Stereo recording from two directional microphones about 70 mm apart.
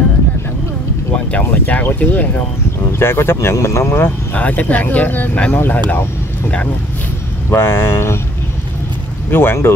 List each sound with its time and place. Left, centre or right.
1.4 s speech: left
3.0 s speech: left
4.0 s speech: left
7.5 s speech: left
9.3 s speech: left